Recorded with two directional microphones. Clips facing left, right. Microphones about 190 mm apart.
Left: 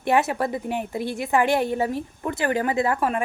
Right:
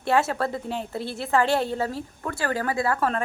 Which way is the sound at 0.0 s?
15° left (ahead or behind).